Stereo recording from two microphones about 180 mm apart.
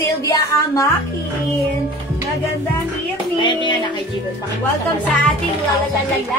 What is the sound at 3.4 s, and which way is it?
Speech, 25° left (ahead or behind).